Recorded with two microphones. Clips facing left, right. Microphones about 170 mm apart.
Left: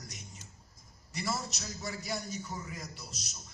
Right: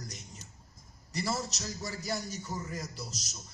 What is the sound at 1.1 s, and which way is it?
A man's voice, 40° right (ahead or behind).